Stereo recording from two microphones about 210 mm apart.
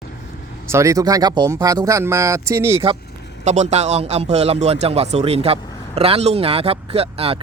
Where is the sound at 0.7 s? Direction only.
15° right (ahead or behind).